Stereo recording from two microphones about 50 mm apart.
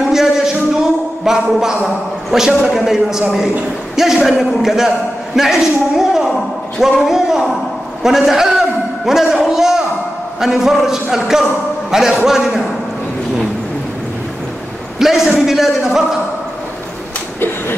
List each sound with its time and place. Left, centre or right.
0.1 s a sound: centre
1.2 s a man's voice: centre
15.0 s a man's voice: centre